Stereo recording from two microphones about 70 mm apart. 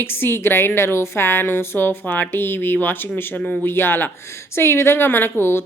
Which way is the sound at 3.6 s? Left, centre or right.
Left.